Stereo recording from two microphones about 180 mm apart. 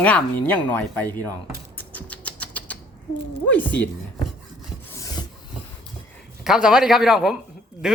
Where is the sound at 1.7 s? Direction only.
10° left (ahead or behind).